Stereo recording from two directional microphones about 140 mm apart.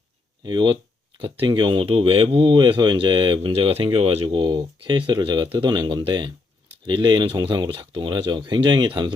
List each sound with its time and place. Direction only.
0.4 s speech: 30° right (ahead or behind)